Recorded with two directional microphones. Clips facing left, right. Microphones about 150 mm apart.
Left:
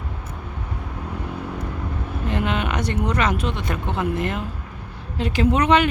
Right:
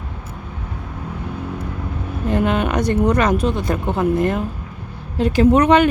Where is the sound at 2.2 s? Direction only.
45° right (ahead or behind).